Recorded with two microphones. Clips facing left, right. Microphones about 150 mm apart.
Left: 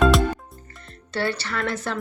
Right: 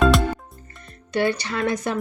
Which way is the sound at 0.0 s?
Centre (ahead or behind).